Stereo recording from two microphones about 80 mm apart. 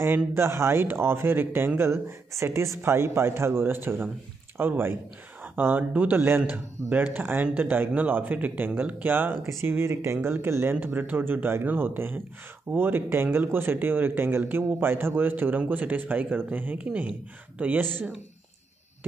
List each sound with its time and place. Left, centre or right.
0.3 s a man's voice: right